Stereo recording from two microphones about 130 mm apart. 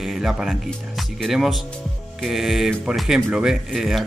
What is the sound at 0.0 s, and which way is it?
Speech, 5° right (ahead or behind).